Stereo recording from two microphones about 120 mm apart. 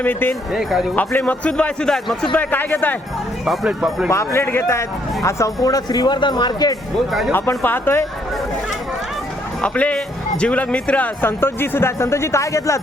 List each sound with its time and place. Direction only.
0.0 s speech: 15° left (ahead or behind)
0.5 s speech: 5° right (ahead or behind)
0.9 s speech: 15° left (ahead or behind)
3.4 s speech: 5° right (ahead or behind)
4.1 s a man's voice: 25° left (ahead or behind)
7.1 s speech: centre (ahead or behind)
7.3 s speech: 20° left (ahead or behind)
9.6 s speech: 10° left (ahead or behind); by 12.8 s 25° left (ahead or behind)